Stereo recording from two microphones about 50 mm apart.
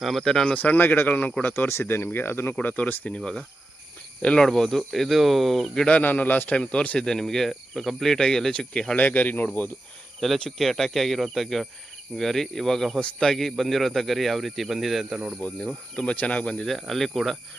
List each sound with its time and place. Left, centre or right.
0.0 s speech: centre
0.5 s speech: left
1.6 s speech: left
2.6 s speech: left
4.4 s speech: centre
5.7 s speech: centre
6.0 s speech: left
6.6 s speech: centre
9.0 s speech: left
10.2 s speech: centre
13.0 s speech: centre
13.2 s speech: centre
15.6 s speech: centre
16.6 s speech: centre